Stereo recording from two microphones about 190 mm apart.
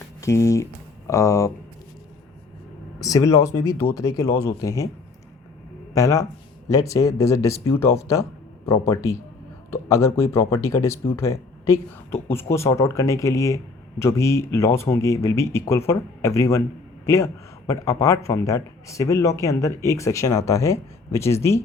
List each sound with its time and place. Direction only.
0.2 s speech: 15° left (ahead or behind)
3.0 s speech: 20° left (ahead or behind)
5.9 s speech: 15° left (ahead or behind)